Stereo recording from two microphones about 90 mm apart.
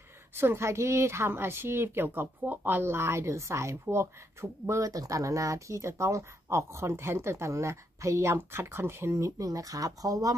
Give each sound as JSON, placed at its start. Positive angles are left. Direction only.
{"t": 0.4, "sound": "speech", "side_deg": -30}